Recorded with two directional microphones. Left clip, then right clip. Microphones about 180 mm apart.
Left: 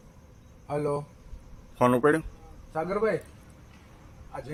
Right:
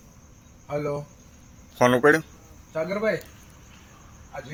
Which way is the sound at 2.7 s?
15° left (ahead or behind).